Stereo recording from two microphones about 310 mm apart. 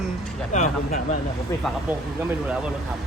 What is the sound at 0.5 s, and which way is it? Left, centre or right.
Speech, left.